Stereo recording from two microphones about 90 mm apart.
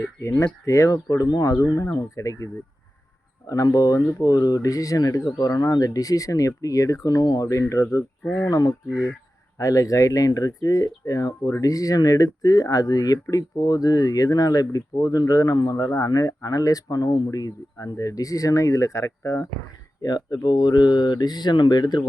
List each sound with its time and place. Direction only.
0.2 s speech: 35° left (ahead or behind)
1.0 s speech: 45° left (ahead or behind)
20.0 s speech: 50° left (ahead or behind)